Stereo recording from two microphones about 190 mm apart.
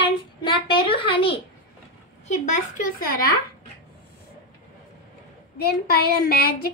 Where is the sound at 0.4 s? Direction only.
25° left (ahead or behind).